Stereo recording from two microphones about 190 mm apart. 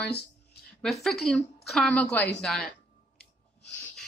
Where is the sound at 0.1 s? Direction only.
55° left (ahead or behind).